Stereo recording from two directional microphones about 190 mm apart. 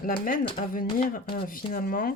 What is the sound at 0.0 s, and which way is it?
Speech, 45° left (ahead or behind).